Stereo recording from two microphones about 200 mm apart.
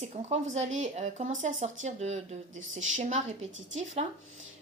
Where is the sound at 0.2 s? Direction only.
35° right (ahead or behind).